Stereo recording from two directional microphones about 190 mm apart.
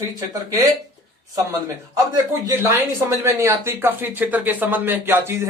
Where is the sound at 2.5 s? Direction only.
15° right (ahead or behind).